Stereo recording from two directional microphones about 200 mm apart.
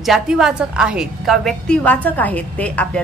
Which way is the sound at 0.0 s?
Centre (ahead or behind).